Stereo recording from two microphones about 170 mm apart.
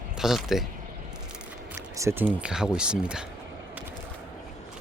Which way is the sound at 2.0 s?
15° right (ahead or behind).